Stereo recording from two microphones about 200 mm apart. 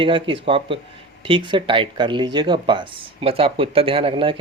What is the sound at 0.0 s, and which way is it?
Speech, 25° right (ahead or behind).